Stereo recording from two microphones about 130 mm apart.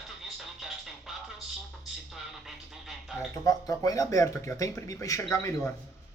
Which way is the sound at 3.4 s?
25° left (ahead or behind).